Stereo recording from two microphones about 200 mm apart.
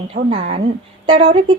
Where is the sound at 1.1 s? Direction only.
25° right (ahead or behind).